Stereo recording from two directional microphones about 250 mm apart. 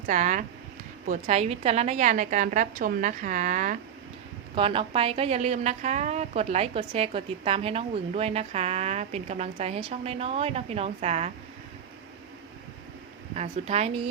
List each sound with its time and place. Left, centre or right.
0.1 s a woman's voice: right
4.5 s a woman's voice: right
13.3 s a woman's voice: right